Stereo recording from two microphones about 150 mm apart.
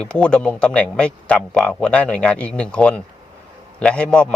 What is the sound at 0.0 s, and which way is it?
Speech, 5° left (ahead or behind).